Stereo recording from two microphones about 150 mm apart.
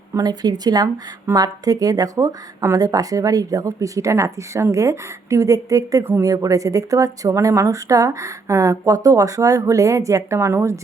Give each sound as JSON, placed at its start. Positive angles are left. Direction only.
{"t": 0.1, "sound": "speech", "side_deg": -25}